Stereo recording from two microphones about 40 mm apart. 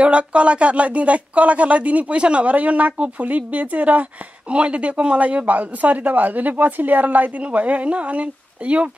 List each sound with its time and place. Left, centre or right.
0.0 s speech: right